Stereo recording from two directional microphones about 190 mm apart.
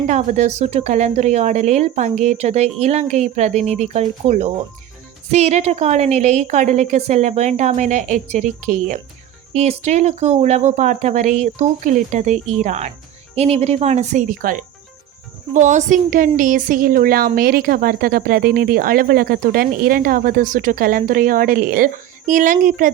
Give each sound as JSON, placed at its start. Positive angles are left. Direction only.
{"t": 0.1, "sound": "a woman's voice", "side_deg": -40}